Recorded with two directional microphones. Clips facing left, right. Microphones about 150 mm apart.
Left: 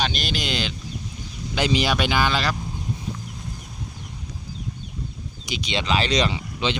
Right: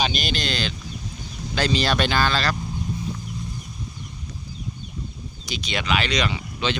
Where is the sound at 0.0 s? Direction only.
Centre (ahead or behind).